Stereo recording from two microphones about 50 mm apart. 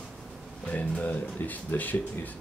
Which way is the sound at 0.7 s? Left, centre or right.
Left.